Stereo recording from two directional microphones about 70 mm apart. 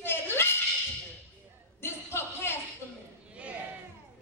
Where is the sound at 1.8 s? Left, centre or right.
Left.